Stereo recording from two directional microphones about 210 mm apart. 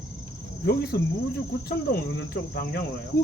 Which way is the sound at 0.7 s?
50° left (ahead or behind).